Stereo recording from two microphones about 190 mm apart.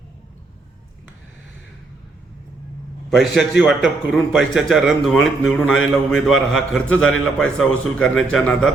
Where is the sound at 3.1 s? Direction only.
Centre (ahead or behind).